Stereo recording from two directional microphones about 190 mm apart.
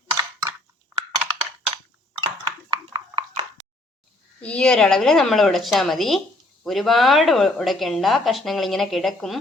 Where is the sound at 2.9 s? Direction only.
30° right (ahead or behind).